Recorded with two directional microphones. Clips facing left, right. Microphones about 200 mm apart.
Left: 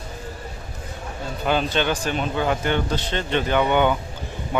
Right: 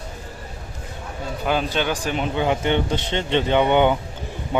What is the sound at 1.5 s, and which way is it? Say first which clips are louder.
A man's voice: left 1 dB; 10° right (ahead or behind).